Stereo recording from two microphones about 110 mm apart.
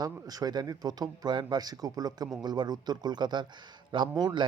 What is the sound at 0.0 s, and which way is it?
A man's voice, 35° right (ahead or behind).